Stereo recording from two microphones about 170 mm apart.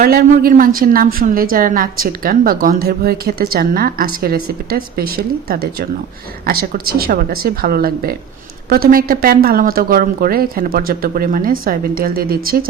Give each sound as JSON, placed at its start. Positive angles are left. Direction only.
{"t": 0.0, "sound": "a woman's voice", "side_deg": -60}